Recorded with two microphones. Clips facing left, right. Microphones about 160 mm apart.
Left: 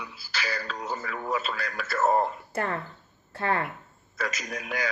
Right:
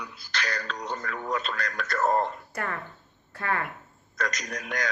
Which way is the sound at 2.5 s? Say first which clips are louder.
Left 4 dB; 30° left (ahead or behind).